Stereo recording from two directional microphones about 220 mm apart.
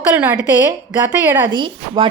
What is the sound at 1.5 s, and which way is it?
Speech, 20° right (ahead or behind).